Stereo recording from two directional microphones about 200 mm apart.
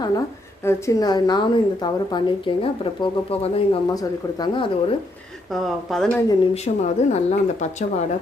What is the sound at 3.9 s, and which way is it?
Speech, 20° left (ahead or behind).